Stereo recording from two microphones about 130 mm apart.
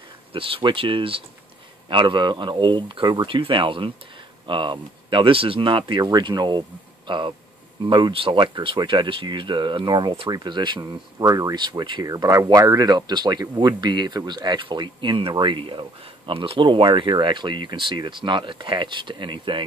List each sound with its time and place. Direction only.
0.3 s speech: 45° right (ahead or behind)